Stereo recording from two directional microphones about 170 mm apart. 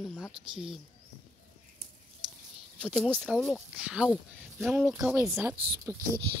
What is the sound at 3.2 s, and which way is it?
A woman's voice, centre (ahead or behind).